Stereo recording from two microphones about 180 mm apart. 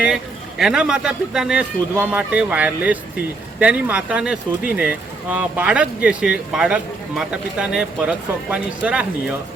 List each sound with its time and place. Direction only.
0.6 s speech: 5° right (ahead or behind)